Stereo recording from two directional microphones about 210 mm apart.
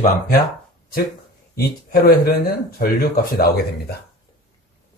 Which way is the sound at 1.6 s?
45° left (ahead or behind).